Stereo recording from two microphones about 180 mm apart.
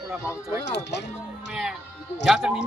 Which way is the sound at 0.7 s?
75° left (ahead or behind).